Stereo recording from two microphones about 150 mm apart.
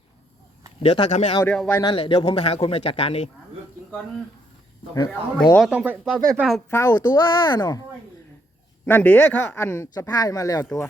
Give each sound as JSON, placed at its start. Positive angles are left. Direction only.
{"t": 0.8, "sound": "speech", "side_deg": 40}
{"t": 4.9, "sound": "speech", "side_deg": 30}
{"t": 5.5, "sound": "speech", "side_deg": 0}
{"t": 5.8, "sound": "speech", "side_deg": -10}
{"t": 6.7, "sound": "speech", "side_deg": 20}
{"t": 8.9, "sound": "speech", "side_deg": 10}